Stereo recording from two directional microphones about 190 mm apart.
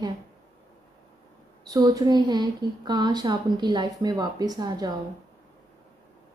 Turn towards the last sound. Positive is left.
turn(degrees=-20)  # may be behind; listen again after turning